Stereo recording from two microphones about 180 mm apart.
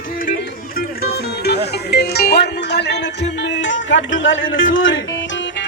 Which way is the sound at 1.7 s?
65° left (ahead or behind).